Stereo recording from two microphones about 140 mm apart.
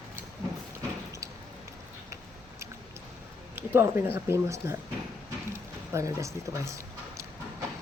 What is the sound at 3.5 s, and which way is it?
Speech, 15° right (ahead or behind).